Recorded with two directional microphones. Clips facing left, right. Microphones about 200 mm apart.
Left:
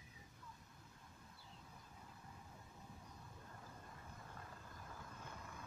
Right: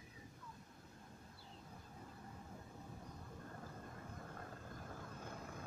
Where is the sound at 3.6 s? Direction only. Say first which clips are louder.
Right 5 dB; 50° right (ahead or behind).